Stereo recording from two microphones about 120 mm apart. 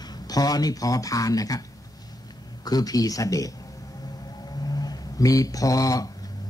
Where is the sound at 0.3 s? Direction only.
30° left (ahead or behind).